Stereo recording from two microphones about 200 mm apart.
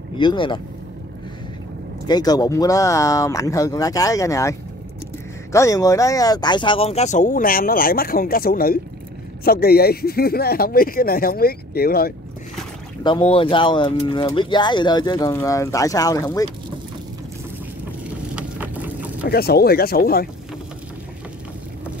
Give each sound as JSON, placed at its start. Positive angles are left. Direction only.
{"t": 0.2, "sound": "speech", "side_deg": 25}
{"t": 2.0, "sound": "speech", "side_deg": 20}
{"t": 13.0, "sound": "speech", "side_deg": 25}
{"t": 18.3, "sound": "a sound", "side_deg": -10}
{"t": 19.2, "sound": "speech", "side_deg": 50}